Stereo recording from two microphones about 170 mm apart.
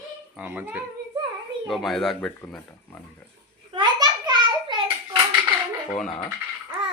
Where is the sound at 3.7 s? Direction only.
25° right (ahead or behind).